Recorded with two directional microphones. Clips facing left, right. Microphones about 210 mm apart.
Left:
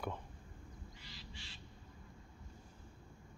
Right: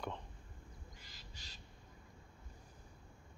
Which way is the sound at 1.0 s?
45° right (ahead or behind).